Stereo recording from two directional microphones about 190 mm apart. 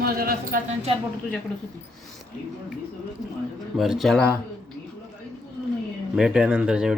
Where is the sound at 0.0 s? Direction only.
50° right (ahead or behind).